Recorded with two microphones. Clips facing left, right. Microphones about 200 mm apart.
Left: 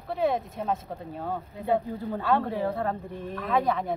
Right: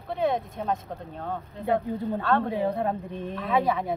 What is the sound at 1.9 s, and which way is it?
A woman's voice, 20° right (ahead or behind).